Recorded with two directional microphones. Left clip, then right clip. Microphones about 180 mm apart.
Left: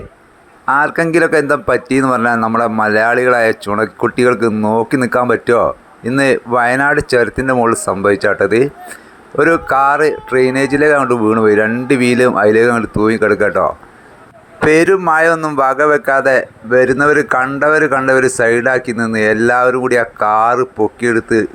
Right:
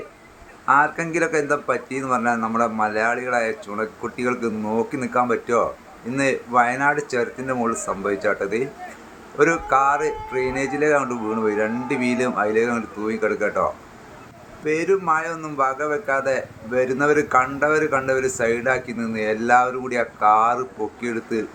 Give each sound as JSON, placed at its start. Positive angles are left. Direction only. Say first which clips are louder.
{"t": 0.6, "sound": "speech", "louder": "left 5 dB", "side_deg": 50}
{"t": 14.7, "sound": "speech", "louder": "left 9 dB", "side_deg": 55}